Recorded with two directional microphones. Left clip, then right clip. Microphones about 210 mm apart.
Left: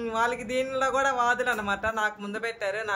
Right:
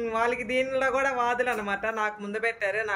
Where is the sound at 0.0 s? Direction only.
Centre (ahead or behind).